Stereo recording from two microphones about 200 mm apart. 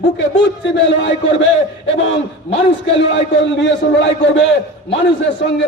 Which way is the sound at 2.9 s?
65° left (ahead or behind).